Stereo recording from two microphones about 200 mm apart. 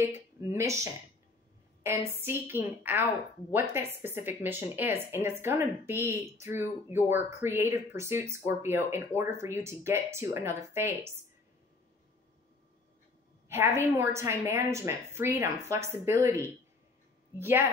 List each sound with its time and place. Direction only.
0.0 s speech: 15° right (ahead or behind)
1.8 s speech: 10° right (ahead or behind)
13.5 s a woman's voice: 10° right (ahead or behind)